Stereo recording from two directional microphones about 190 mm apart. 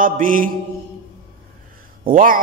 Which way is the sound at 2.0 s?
45° right (ahead or behind).